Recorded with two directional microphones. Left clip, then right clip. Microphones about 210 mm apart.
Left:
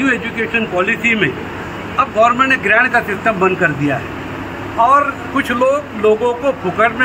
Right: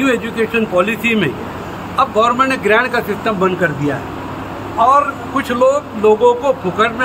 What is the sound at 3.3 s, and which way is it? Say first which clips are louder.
Speech: left 1 dB; 30° right (ahead or behind).